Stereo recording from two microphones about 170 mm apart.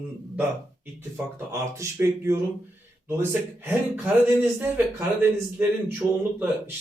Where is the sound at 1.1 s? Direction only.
15° right (ahead or behind).